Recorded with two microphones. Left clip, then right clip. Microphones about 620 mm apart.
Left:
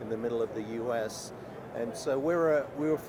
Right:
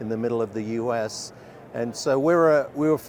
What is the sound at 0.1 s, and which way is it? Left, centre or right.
A man's voice, right.